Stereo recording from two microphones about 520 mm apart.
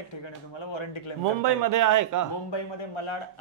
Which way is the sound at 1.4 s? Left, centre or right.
Right.